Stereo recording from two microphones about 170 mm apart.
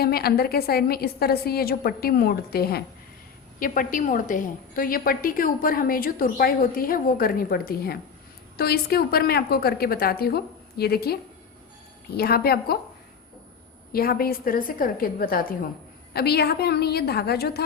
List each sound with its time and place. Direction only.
0.0 s a woman's voice: 65° left (ahead or behind)
3.6 s a woman's voice: 55° left (ahead or behind)
13.9 s a woman's voice: 60° left (ahead or behind)
16.1 s a woman's voice: 70° left (ahead or behind)